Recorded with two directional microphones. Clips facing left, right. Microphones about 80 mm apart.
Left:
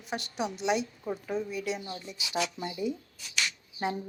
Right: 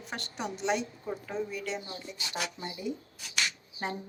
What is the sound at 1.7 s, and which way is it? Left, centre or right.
Speech, right.